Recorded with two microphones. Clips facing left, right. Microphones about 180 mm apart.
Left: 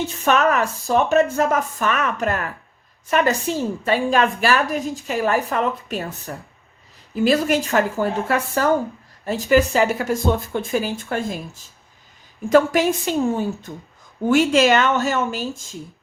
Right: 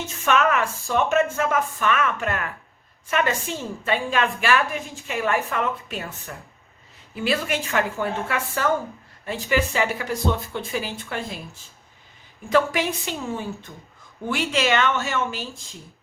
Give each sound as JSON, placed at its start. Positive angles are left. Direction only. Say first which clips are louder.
{"t": 0.0, "sound": "a woman's voice", "louder": "left 3 dB", "side_deg": 40}
{"t": 12.5, "sound": "a woman's voice", "louder": "left 6 dB", "side_deg": 45}